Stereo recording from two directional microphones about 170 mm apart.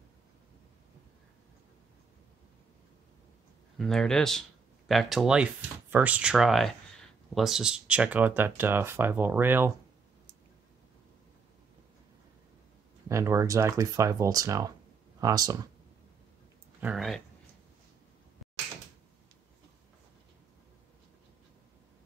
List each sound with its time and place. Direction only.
3.7 s speech: centre (ahead or behind)
13.1 s speech: 15° right (ahead or behind)
16.8 s speech: centre (ahead or behind)